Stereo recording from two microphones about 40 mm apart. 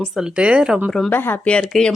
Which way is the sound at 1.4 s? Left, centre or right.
Left.